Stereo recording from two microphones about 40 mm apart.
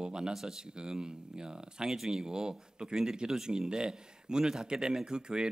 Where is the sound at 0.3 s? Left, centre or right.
Centre.